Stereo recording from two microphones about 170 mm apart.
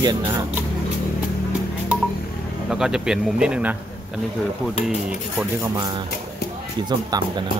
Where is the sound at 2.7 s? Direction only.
5° right (ahead or behind).